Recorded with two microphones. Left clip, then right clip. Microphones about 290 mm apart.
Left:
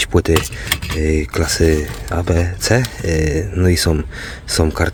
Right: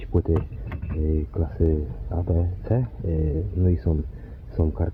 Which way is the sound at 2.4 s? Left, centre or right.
Centre.